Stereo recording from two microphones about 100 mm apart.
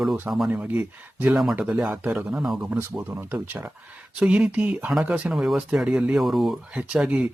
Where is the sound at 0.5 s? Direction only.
15° right (ahead or behind).